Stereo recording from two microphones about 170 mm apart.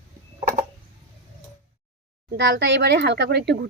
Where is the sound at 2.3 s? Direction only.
80° right.